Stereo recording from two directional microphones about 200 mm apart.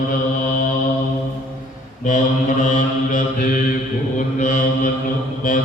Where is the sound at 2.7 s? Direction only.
40° left (ahead or behind).